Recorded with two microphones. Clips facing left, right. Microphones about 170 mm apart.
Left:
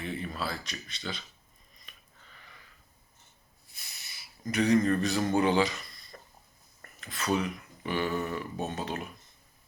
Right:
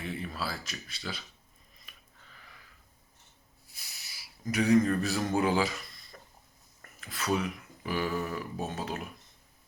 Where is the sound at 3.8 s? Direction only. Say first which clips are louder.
Left 1 dB; 5° right (ahead or behind).